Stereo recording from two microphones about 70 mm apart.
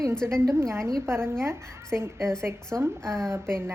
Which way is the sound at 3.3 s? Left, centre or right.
Right.